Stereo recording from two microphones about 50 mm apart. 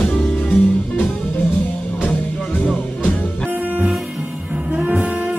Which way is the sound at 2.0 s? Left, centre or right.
Left.